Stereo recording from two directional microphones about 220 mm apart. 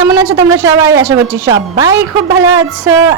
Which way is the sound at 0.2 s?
10° right (ahead or behind).